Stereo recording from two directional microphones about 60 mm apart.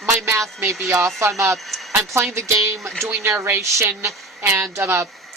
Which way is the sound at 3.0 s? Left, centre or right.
Right.